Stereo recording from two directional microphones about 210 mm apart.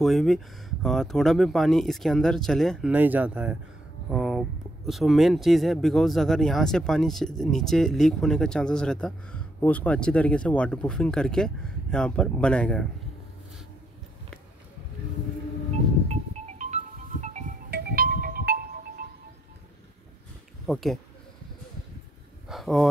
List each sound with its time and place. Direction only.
0.0 s speech: centre (ahead or behind)
16.5 s music: 35° right (ahead or behind)
17.6 s music: 50° right (ahead or behind)
20.6 s speech: centre (ahead or behind)
22.5 s a sound: centre (ahead or behind)